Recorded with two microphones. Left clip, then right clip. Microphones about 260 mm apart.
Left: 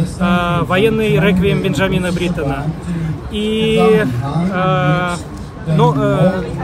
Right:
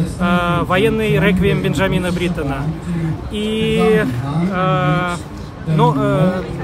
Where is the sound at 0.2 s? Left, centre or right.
Centre.